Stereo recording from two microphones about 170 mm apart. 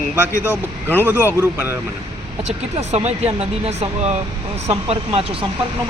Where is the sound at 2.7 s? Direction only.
40° right (ahead or behind).